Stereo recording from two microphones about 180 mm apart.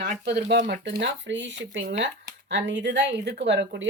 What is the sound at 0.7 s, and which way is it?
A woman's voice, 70° right (ahead or behind).